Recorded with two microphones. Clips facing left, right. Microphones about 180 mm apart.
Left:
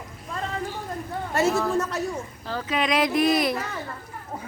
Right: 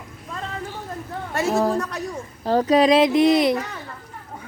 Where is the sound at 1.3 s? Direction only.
Centre (ahead or behind).